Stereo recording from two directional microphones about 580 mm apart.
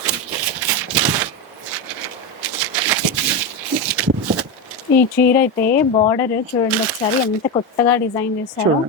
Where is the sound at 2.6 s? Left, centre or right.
Centre.